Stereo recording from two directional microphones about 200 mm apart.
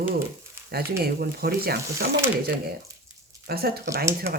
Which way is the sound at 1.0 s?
50° right (ahead or behind).